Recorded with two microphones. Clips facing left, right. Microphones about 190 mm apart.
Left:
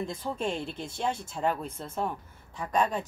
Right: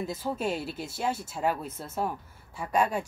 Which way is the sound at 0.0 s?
5° right (ahead or behind).